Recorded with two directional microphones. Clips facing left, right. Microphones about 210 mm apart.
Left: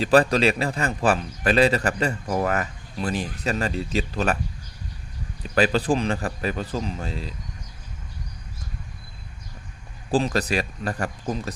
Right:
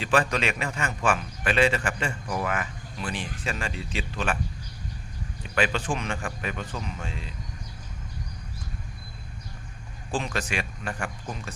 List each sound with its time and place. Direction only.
0.0 s a man's voice: 35° left (ahead or behind)
5.5 s a man's voice: 35° left (ahead or behind)
10.1 s a man's voice: 35° left (ahead or behind)